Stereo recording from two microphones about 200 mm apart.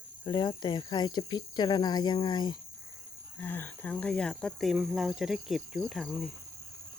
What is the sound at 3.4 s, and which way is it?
Speech, 10° left (ahead or behind).